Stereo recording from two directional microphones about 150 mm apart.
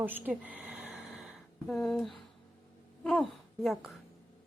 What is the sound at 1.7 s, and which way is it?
A woman's voice, 5° left (ahead or behind).